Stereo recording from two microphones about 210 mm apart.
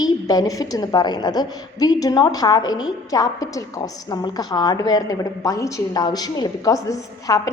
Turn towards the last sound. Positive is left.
turn(degrees=15)  # may be behind; listen again after turning